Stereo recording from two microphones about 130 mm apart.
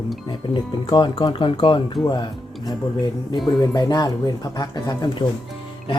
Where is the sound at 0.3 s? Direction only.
35° left (ahead or behind).